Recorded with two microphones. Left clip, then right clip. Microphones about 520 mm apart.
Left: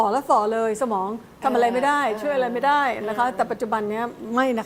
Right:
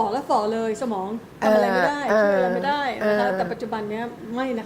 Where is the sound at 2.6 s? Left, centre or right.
Left.